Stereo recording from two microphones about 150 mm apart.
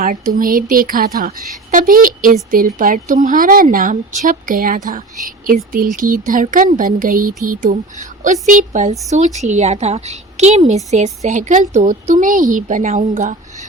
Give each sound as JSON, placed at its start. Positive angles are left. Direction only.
{"t": 0.0, "sound": "a woman's voice", "side_deg": -65}
{"t": 6.0, "sound": "a woman's voice", "side_deg": -65}